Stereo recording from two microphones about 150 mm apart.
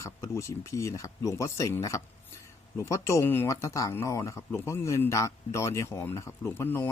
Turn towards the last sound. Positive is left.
turn(degrees=15)  # may be behind; listen again after turning